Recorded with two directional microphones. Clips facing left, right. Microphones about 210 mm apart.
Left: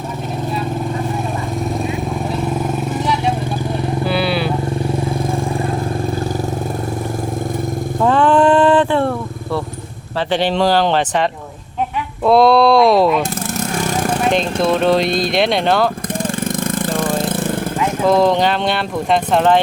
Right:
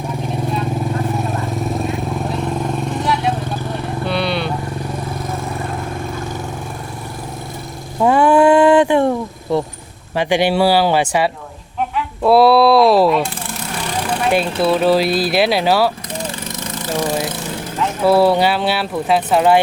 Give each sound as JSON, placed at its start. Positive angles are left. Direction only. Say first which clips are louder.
{"t": 1.8, "sound": "vehicle", "louder": "even", "side_deg": 0}
{"t": 8.0, "sound": "a sound", "louder": "right 1 dB", "side_deg": -10}
{"t": 10.2, "sound": "speech", "louder": "right 2 dB", "side_deg": -10}
{"t": 13.6, "sound": "vehicle", "louder": "left 5 dB", "side_deg": 45}
{"t": 14.3, "sound": "speech", "louder": "right 2 dB", "side_deg": -5}
{"t": 16.2, "sound": "lawn mower", "louder": "left 9 dB", "side_deg": 50}
{"t": 18.0, "sound": "speech", "louder": "right 1 dB", "side_deg": -10}